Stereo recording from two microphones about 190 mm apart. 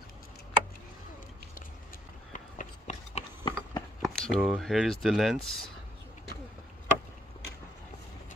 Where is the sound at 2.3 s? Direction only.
40° left (ahead or behind).